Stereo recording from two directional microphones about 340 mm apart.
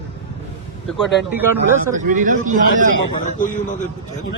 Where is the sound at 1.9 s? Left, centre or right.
Right.